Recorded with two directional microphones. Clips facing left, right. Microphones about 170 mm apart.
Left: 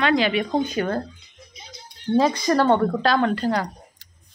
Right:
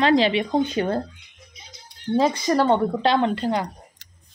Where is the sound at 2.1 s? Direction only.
20° right (ahead or behind).